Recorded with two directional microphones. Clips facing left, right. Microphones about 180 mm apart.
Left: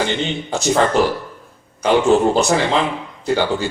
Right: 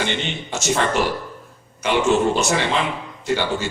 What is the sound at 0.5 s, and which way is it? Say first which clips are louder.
A man's voice: left 5 dB; 35° left (ahead or behind).